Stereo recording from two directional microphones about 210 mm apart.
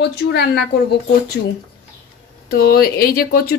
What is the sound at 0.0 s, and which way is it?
Speech, 50° left (ahead or behind).